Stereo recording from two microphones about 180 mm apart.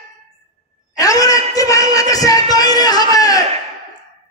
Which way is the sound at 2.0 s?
20° left (ahead or behind).